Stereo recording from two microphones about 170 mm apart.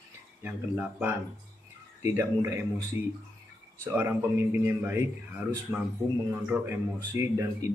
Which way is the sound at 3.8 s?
10° right (ahead or behind).